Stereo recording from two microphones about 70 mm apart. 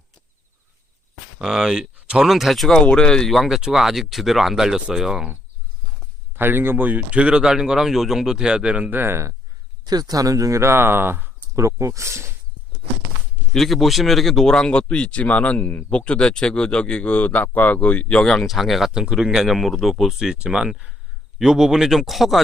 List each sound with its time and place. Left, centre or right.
1.4 s speech: centre
2.7 s speech: centre
6.3 s speech: right
9.8 s speech: right
11.5 s speech: right
13.5 s speech: centre